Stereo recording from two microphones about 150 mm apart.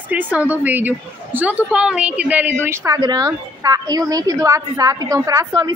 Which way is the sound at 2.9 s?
25° right (ahead or behind).